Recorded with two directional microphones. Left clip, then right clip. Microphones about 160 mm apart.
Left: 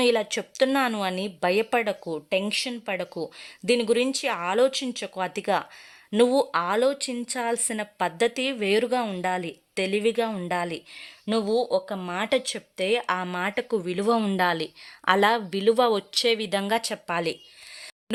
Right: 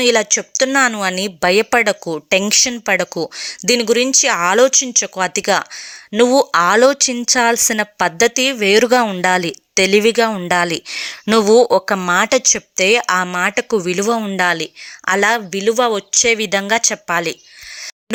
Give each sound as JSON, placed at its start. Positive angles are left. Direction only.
{"t": 0.0, "sound": "a woman's voice", "side_deg": -20}
{"t": 10.2, "sound": "a woman's voice", "side_deg": -10}
{"t": 10.5, "sound": "a woman's voice", "side_deg": -25}
{"t": 10.9, "sound": "speech", "side_deg": -45}
{"t": 11.9, "sound": "a woman's voice", "side_deg": -20}